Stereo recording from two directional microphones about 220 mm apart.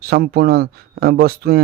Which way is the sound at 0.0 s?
45° right (ahead or behind).